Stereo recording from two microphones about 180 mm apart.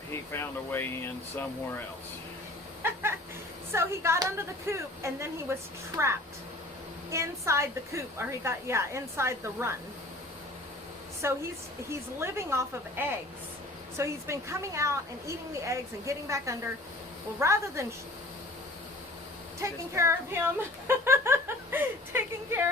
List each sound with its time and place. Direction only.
0.1 s speech: 15° left (ahead or behind)
2.8 s chicken: 15° right (ahead or behind)
3.7 s a woman's voice: 15° right (ahead or behind)
7.1 s a woman's voice: 15° right (ahead or behind)
11.2 s a woman's voice: 15° right (ahead or behind)
19.5 s a woman's voice: 15° right (ahead or behind)